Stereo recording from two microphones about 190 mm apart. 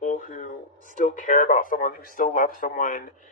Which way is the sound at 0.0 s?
40° left (ahead or behind).